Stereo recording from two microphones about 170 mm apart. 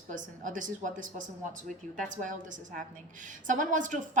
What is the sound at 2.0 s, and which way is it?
A woman's voice, 50° right (ahead or behind).